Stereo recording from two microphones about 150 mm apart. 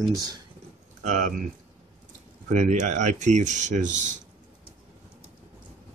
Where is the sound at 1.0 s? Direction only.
60° right (ahead or behind).